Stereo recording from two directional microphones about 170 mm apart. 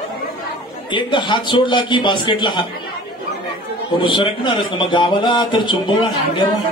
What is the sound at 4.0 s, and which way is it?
A man's voice, 30° left (ahead or behind).